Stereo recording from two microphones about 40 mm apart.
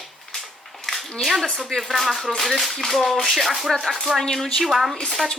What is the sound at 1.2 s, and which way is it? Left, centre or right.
Speech, centre.